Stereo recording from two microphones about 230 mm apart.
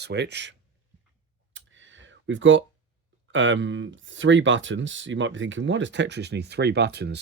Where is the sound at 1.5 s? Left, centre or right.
Right.